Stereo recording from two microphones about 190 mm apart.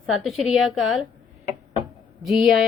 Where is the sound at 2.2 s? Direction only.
Centre (ahead or behind).